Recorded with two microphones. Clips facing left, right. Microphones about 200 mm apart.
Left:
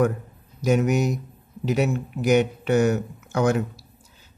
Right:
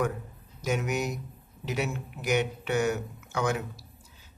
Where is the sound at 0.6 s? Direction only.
40° left (ahead or behind).